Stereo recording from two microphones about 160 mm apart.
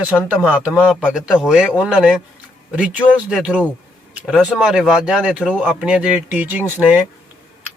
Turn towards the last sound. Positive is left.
turn(degrees=-10)  # may be behind; listen again after turning